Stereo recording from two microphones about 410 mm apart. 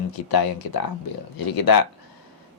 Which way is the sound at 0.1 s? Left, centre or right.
Left.